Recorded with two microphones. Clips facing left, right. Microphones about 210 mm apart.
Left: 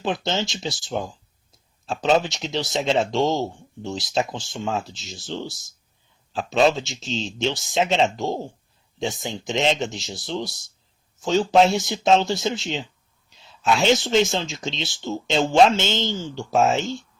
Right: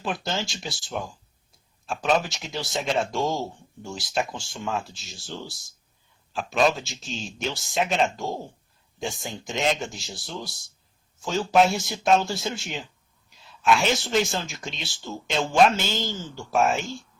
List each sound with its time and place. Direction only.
0.3 s speech: 25° left (ahead or behind)